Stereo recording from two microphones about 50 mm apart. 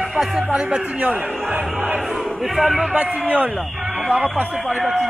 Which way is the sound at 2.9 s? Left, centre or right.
Right.